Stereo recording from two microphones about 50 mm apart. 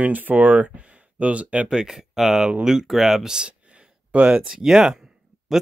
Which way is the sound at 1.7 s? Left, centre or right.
Centre.